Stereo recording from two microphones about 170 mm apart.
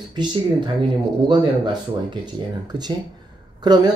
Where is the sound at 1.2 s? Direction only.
25° right (ahead or behind).